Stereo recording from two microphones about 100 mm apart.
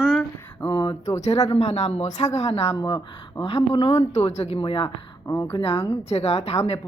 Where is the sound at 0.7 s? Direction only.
60° left (ahead or behind); by 2.7 s 90° left.